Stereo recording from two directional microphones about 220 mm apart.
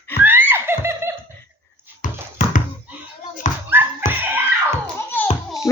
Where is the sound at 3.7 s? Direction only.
10° right (ahead or behind).